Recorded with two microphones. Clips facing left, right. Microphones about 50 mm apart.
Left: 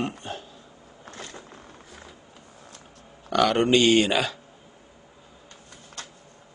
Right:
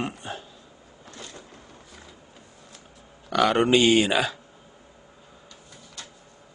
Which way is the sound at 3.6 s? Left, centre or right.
Right.